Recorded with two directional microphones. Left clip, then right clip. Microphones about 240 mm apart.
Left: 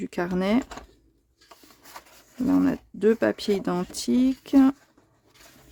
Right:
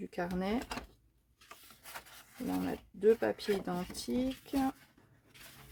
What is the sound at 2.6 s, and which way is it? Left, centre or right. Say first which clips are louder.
Speech: left 6 dB; left.